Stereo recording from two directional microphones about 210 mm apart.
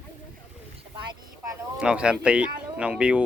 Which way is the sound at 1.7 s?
5° right (ahead or behind).